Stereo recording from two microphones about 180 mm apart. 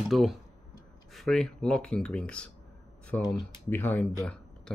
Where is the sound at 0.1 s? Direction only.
Centre (ahead or behind).